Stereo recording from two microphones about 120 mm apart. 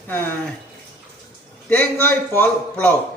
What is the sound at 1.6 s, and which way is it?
Speech, 10° left (ahead or behind).